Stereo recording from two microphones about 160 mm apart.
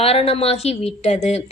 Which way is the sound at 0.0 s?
40° left (ahead or behind).